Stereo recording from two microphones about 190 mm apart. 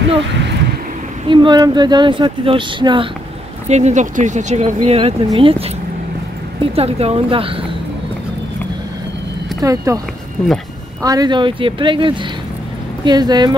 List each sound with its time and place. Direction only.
1.3 s speech: 25° right (ahead or behind)
3.6 s speech: 35° right (ahead or behind)
6.6 s speech: 30° right (ahead or behind)
9.6 s speech: 15° right (ahead or behind)
11.0 s speech: 20° right (ahead or behind)